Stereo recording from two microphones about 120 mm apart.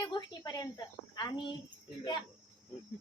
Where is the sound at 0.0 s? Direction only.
35° left (ahead or behind).